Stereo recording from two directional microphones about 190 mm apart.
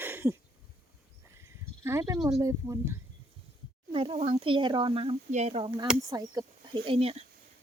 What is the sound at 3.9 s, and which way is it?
Speech, 30° right (ahead or behind).